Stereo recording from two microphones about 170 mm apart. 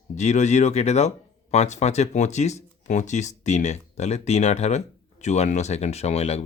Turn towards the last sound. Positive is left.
turn(degrees=40)  # may be behind; listen again after turning